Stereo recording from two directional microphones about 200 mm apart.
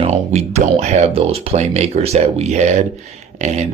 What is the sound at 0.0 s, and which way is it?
Speech, 35° right (ahead or behind).